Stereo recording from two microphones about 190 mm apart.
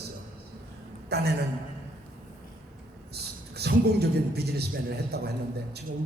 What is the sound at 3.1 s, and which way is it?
A man's voice, 60° right (ahead or behind).